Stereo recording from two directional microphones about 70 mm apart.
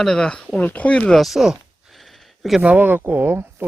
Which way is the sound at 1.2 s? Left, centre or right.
Centre.